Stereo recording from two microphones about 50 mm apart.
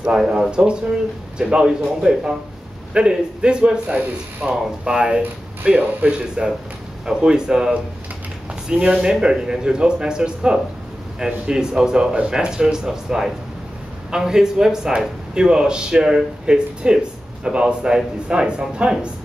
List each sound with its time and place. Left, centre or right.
0.0 s a man's voice: centre
5.6 s speech: right
6.4 s a man's voice: centre